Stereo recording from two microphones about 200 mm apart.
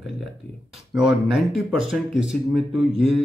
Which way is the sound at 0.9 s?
Centre (ahead or behind).